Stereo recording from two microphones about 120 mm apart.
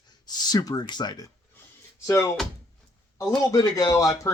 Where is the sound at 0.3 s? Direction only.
35° left (ahead or behind).